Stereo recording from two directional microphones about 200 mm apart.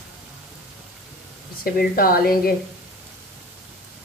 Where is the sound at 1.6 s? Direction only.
45° left (ahead or behind).